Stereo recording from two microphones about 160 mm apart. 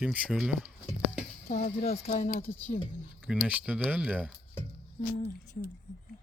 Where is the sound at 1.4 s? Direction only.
50° left (ahead or behind).